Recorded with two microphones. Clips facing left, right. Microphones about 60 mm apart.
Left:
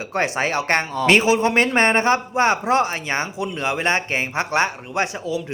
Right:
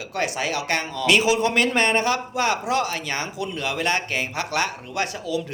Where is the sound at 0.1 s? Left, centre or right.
Left.